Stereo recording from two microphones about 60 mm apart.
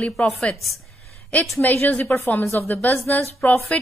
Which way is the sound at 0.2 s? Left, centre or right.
Left.